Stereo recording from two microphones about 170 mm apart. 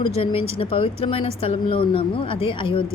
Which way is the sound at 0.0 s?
30° left (ahead or behind).